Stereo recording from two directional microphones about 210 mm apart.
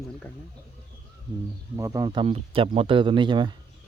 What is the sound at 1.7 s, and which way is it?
Speech, 15° right (ahead or behind).